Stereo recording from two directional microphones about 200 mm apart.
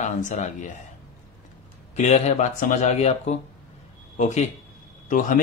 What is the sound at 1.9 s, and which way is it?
Speech, 35° left (ahead or behind).